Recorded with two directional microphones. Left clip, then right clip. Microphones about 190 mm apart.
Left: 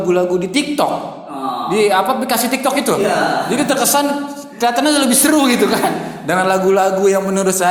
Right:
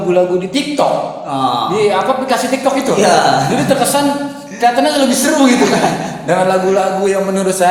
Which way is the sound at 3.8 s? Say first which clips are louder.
Right 2 dB; 15° left (ahead or behind).